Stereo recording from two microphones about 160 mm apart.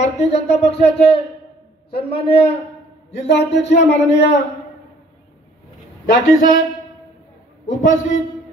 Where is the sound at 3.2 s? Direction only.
90° left.